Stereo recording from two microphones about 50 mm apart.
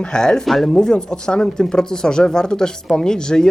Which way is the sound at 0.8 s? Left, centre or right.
Centre.